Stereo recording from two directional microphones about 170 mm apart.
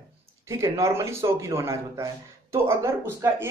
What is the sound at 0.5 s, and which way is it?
Speech, 15° right (ahead or behind).